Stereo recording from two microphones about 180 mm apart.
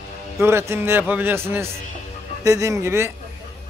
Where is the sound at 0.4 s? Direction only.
15° right (ahead or behind).